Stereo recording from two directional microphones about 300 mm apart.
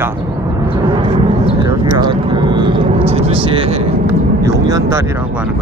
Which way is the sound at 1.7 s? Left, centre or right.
Centre.